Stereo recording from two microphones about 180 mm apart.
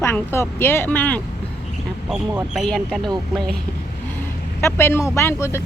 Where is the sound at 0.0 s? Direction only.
15° left (ahead or behind).